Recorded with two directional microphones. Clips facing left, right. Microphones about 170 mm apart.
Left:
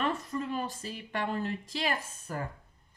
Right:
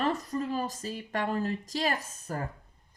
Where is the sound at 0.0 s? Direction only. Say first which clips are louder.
Right 2 dB; 35° right (ahead or behind).